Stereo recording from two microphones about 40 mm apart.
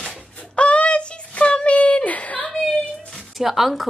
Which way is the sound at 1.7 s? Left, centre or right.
Left.